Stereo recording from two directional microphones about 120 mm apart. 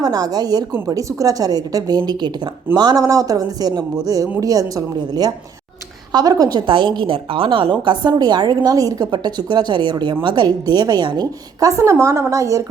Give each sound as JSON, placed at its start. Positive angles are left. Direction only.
{"t": 0.0, "sound": "a woman's voice", "side_deg": -30}